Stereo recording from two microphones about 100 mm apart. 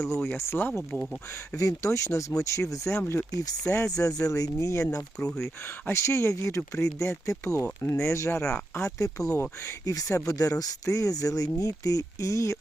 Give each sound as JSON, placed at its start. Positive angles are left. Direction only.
{"t": 0.2, "sound": "speech", "side_deg": 25}
{"t": 1.5, "sound": "speech", "side_deg": 35}
{"t": 3.6, "sound": "speech", "side_deg": 30}
{"t": 9.3, "sound": "speech", "side_deg": 25}
{"t": 9.8, "sound": "speech", "side_deg": 35}